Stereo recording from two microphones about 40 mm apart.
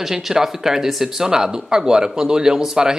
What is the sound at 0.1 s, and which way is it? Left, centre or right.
Speech, centre.